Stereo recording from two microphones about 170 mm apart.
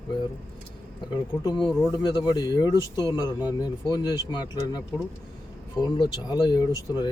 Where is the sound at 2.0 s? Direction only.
25° left (ahead or behind).